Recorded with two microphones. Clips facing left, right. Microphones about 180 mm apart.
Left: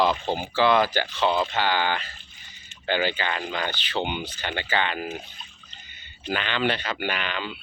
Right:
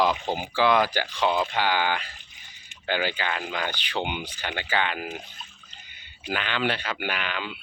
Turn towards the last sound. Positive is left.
turn(degrees=-10)  # may be behind; listen again after turning